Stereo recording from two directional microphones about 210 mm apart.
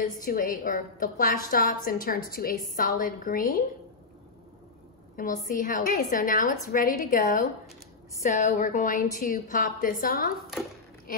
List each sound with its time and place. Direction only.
0.2 s a woman's voice: 40° left (ahead or behind)
5.1 s a woman's voice: 40° left (ahead or behind)